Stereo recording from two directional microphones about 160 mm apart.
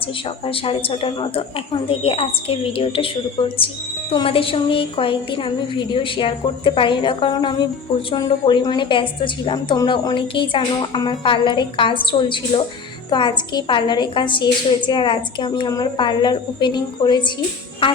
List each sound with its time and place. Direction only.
0.4 s a woman's voice: 35° left (ahead or behind)